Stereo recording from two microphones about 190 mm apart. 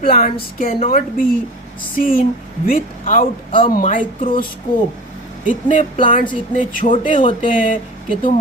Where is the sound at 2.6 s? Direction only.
45° left (ahead or behind).